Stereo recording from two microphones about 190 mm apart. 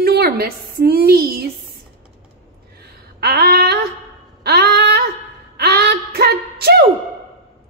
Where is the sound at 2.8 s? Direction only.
60° right (ahead or behind).